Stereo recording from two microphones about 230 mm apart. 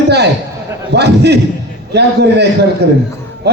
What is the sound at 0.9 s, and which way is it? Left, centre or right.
Speech, right.